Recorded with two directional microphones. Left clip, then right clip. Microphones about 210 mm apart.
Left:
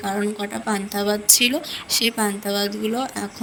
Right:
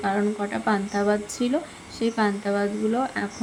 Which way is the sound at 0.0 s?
Centre (ahead or behind).